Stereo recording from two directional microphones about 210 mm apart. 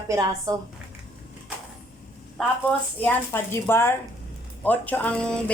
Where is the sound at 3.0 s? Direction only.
10° left (ahead or behind).